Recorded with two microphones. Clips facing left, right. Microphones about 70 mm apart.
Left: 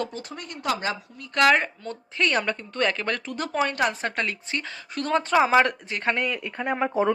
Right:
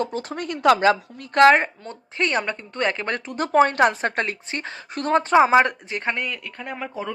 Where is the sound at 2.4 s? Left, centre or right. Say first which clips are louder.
Right 1 dB; centre.